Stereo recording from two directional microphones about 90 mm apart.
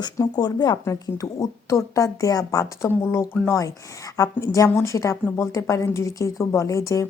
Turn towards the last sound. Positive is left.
turn(degrees=35)  # may be behind; listen again after turning